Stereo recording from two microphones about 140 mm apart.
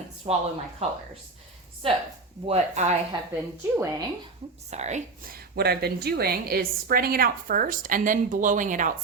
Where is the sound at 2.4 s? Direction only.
55° right (ahead or behind).